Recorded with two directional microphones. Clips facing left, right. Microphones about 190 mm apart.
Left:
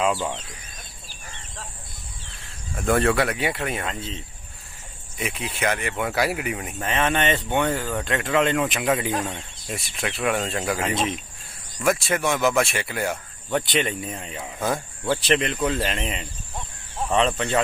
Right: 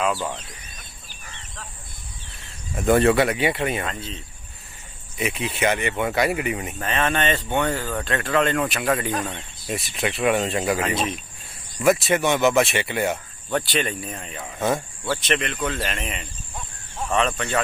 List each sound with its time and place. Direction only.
2.7 s speech: centre (ahead or behind)
3.8 s speech: 20° left (ahead or behind)
5.1 s speech: centre (ahead or behind)
6.8 s speech: 20° left (ahead or behind)
7.6 s speech: centre (ahead or behind)
8.0 s speech: 15° left (ahead or behind)
9.2 s speech: centre (ahead or behind)
13.5 s speech: 20° left (ahead or behind)
15.2 s speech: 30° left (ahead or behind)